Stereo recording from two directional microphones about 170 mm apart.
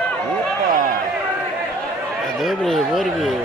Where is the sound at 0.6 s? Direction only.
55° right (ahead or behind).